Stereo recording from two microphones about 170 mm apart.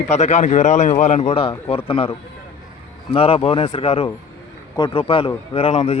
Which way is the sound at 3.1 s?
35° left (ahead or behind).